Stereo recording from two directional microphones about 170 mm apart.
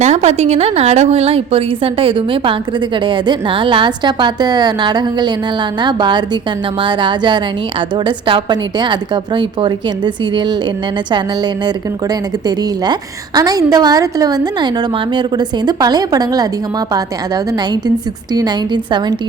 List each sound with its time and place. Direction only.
0.0 s a woman's voice: 40° right (ahead or behind)
12.5 s a woman's voice: 25° right (ahead or behind)
18.3 s a woman's voice: 25° right (ahead or behind)